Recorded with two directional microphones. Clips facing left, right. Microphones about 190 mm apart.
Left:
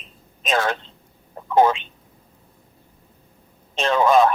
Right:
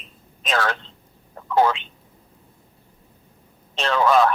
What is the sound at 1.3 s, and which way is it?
Telephone, 20° left (ahead or behind).